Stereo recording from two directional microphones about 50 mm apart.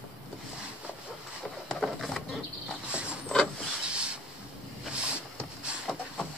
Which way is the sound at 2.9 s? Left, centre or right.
Right.